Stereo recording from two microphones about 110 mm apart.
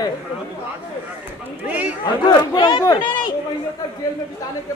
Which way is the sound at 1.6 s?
15° right (ahead or behind).